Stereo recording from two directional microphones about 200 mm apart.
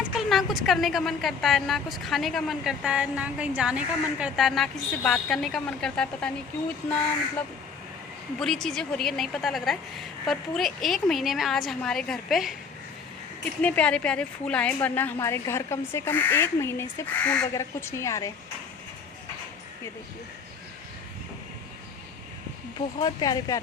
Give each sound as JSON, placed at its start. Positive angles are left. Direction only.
{"t": 0.2, "sound": "a woman's voice", "side_deg": 0}
{"t": 8.4, "sound": "a woman's voice", "side_deg": 0}
{"t": 13.6, "sound": "a woman's voice", "side_deg": 5}
{"t": 23.0, "sound": "speech", "side_deg": 20}